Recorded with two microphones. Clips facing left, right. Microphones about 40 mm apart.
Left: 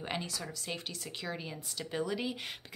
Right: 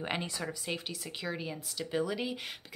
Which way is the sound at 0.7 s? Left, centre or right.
Centre.